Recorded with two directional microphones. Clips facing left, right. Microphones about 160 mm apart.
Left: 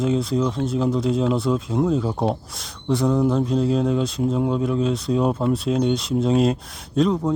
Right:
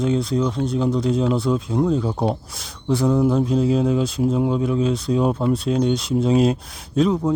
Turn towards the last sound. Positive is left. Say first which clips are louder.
# right 1 dB
turn(degrees=0)  # may be behind; listen again after turning